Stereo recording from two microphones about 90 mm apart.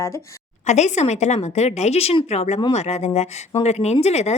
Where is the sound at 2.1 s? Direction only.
60° left (ahead or behind).